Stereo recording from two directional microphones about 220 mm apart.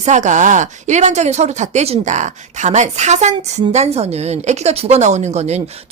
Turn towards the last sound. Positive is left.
turn(degrees=-30)  # may be behind; listen again after turning